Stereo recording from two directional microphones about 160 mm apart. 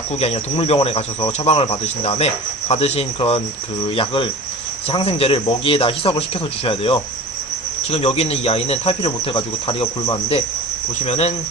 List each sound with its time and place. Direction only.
0.2 s speech: 40° left (ahead or behind)
11.0 s cricket: 45° left (ahead or behind)